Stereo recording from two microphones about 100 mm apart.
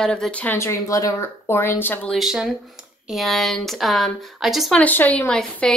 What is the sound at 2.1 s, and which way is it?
Speech, 5° right (ahead or behind).